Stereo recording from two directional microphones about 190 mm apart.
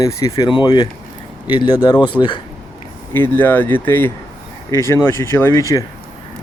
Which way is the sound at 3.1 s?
10° left (ahead or behind).